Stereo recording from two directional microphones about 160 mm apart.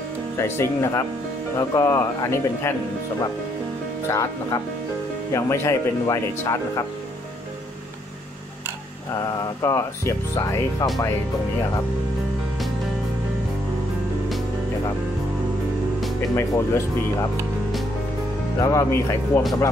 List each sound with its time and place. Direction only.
0.4 s speech: 15° left (ahead or behind)
4.1 s speech: 20° left (ahead or behind)
9.4 s speech: 20° left (ahead or behind)
16.3 s speech: 20° left (ahead or behind)
18.6 s speech: 20° left (ahead or behind)